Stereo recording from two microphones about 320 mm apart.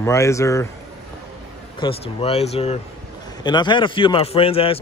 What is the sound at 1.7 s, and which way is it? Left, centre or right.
A man's voice, centre.